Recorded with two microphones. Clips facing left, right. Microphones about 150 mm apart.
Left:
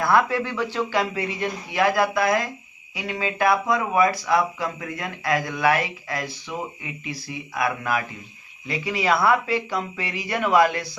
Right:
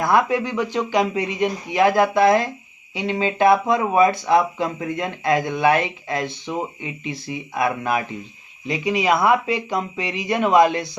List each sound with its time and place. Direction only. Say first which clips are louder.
0.0 s speech: right 2 dB; 15° right (ahead or behind)